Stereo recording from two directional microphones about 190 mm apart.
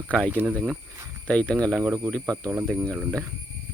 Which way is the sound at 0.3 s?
10° right (ahead or behind).